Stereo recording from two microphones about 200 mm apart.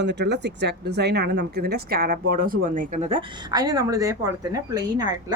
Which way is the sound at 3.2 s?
20° right (ahead or behind).